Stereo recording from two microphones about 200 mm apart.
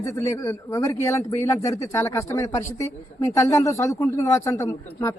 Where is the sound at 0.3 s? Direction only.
15° left (ahead or behind).